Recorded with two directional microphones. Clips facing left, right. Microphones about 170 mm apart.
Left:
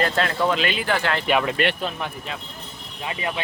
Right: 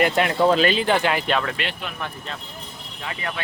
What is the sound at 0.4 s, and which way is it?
Speech, 35° right (ahead or behind).